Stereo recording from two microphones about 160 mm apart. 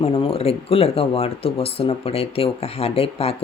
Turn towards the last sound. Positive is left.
turn(degrees=40)  # may be behind; listen again after turning